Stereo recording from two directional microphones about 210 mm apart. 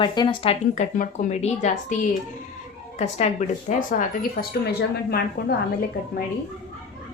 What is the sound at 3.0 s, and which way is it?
A woman's voice, 30° left (ahead or behind).